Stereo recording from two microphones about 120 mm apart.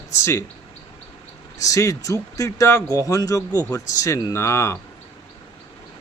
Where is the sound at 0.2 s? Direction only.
25° left (ahead or behind).